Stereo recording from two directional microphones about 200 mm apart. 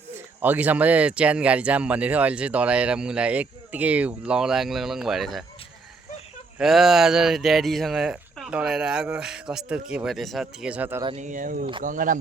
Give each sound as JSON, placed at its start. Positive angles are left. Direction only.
{"t": 0.4, "sound": "speech", "side_deg": -10}
{"t": 6.6, "sound": "speech", "side_deg": 0}
{"t": 11.0, "sound": "speech", "side_deg": -35}